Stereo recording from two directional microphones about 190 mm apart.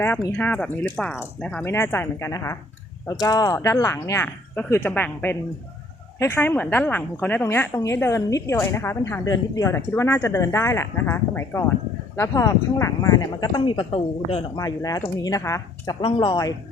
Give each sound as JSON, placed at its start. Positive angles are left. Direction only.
{"t": 0.3, "sound": "a woman's voice", "side_deg": 10}